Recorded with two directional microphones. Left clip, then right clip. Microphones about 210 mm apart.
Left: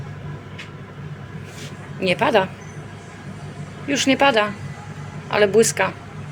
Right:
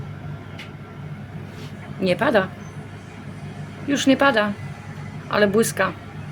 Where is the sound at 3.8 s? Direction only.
20° right (ahead or behind).